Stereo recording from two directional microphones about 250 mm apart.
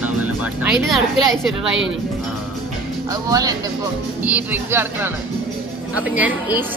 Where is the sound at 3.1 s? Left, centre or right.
Centre.